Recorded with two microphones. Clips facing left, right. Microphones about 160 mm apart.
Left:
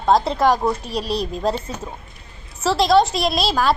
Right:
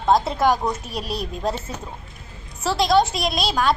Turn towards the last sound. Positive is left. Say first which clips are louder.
# left 2 dB
turn(degrees=0)  # may be behind; listen again after turning